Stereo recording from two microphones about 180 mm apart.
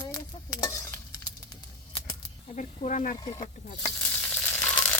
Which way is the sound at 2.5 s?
40° left (ahead or behind).